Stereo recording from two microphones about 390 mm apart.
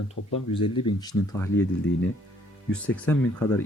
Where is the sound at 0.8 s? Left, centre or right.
Centre.